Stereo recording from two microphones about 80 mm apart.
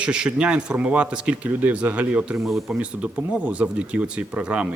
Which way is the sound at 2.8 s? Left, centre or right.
Centre.